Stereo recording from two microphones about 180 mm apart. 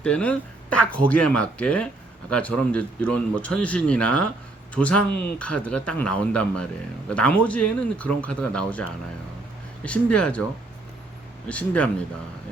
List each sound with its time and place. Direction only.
0.0 s speech: 5° left (ahead or behind)
11.4 s speech: 5° left (ahead or behind)